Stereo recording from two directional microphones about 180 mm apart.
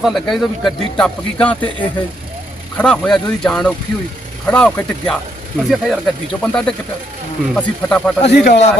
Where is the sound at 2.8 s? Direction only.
5° left (ahead or behind).